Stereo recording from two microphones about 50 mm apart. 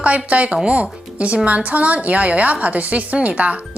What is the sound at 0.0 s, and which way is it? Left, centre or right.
Speech, right.